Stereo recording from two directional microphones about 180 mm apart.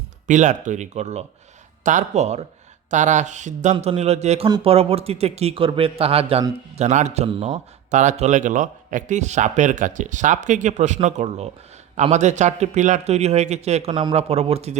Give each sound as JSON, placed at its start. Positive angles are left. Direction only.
{"t": 0.3, "sound": "a man's voice", "side_deg": -45}